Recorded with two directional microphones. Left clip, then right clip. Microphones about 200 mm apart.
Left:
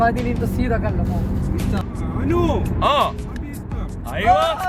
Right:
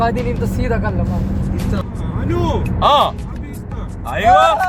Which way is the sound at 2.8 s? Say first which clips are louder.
Right 5 dB; centre (ahead or behind).